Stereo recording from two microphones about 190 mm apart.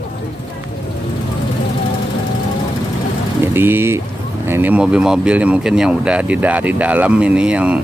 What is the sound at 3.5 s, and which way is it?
Speech, 10° right (ahead or behind).